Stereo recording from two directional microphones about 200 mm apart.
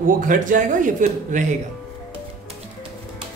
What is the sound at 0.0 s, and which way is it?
Speech, 40° right (ahead or behind).